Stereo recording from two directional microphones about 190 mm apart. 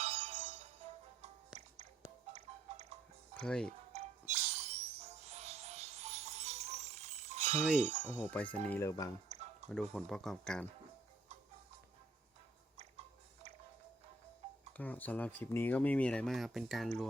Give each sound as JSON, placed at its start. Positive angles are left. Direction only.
{"t": 0.0, "sound": "music", "side_deg": -35}
{"t": 2.3, "sound": "music", "side_deg": -35}
{"t": 3.4, "sound": "speech", "side_deg": 5}
{"t": 3.9, "sound": "music", "side_deg": -35}
{"t": 7.8, "sound": "speech", "side_deg": -35}
{"t": 8.2, "sound": "speech", "side_deg": 5}
{"t": 9.3, "sound": "a sound", "side_deg": -35}
{"t": 9.6, "sound": "speech", "side_deg": 5}
{"t": 12.7, "sound": "chewing", "side_deg": -35}
{"t": 14.8, "sound": "speech", "side_deg": 10}